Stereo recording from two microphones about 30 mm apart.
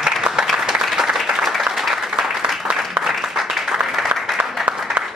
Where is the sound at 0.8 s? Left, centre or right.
Centre.